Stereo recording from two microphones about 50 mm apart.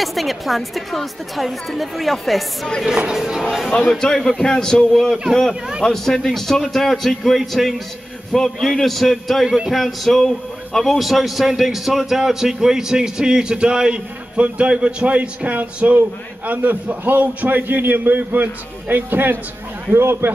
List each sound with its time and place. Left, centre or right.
0.0 s a woman's voice: centre
3.9 s a woman's voice: centre; by 19.3 s right
19.9 s speech: right